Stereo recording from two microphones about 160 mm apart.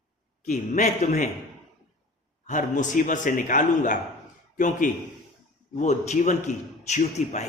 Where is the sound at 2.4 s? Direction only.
50° left (ahead or behind).